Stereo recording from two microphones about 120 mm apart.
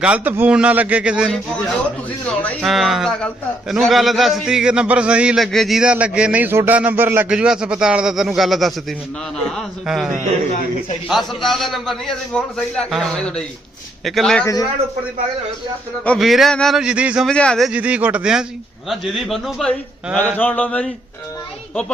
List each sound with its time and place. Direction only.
0.0 s a man's voice: 10° right (ahead or behind)
2.2 s speech: 10° left (ahead or behind)
2.6 s a man's voice: centre (ahead or behind)
11.1 s a man's voice: centre (ahead or behind)
14.4 s a man's voice: 30° left (ahead or behind)
16.0 s a man's voice: centre (ahead or behind)
17.2 s speech: 5° left (ahead or behind)
17.7 s a man's voice: 10° right (ahead or behind)
20.4 s speech: 10° left (ahead or behind)